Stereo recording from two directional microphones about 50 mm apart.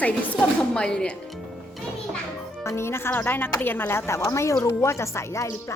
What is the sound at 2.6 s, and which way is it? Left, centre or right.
Speech, left.